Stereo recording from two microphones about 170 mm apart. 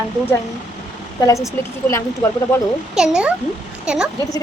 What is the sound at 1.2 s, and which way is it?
Speech, 20° left (ahead or behind).